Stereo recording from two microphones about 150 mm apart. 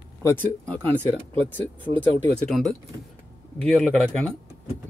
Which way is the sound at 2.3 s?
5° left (ahead or behind).